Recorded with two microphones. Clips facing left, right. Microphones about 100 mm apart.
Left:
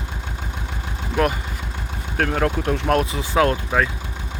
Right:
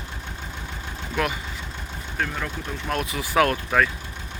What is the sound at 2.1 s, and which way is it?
Speech, 65° left (ahead or behind).